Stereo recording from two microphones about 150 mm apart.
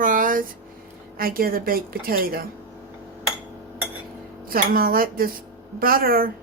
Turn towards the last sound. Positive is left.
turn(degrees=-75)  # may be behind; listen again after turning